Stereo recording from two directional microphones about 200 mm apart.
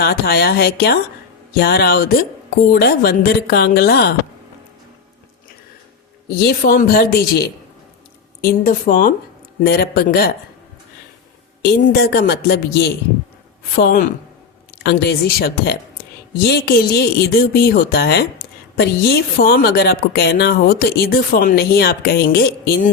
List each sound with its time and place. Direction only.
0.0 s speech: 50° left (ahead or behind)
6.2 s speech: 50° left (ahead or behind)
11.7 s speech: 50° left (ahead or behind)